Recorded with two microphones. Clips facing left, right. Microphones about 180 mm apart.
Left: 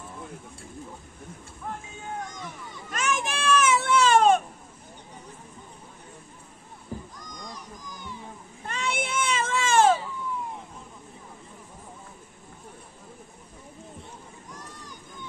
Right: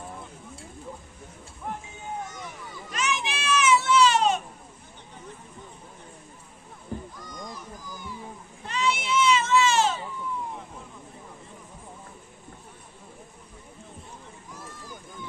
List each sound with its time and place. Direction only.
2.9 s baby cry: 50° left (ahead or behind)
7.2 s a sound: 5° right (ahead or behind)
8.6 s baby cry: 50° left (ahead or behind)